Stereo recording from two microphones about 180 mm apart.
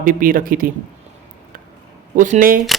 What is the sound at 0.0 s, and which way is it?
Speech, 50° right (ahead or behind).